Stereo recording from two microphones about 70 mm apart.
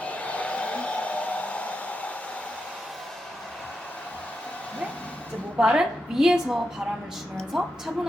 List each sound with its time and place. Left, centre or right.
0.0 s hair dryer: left
5.5 s a woman's voice: centre